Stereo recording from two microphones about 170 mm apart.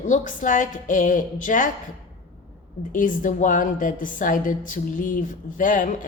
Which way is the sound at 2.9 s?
50° left (ahead or behind).